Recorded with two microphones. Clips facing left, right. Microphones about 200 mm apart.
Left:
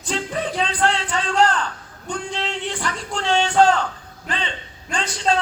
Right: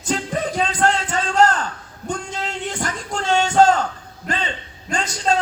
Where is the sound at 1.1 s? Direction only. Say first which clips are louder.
Right 2 dB; 45° right (ahead or behind).